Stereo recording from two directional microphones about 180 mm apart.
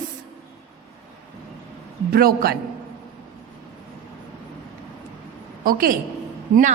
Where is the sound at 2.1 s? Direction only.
55° right (ahead or behind).